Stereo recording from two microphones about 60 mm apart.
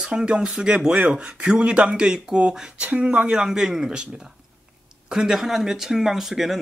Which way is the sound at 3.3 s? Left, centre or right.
Centre.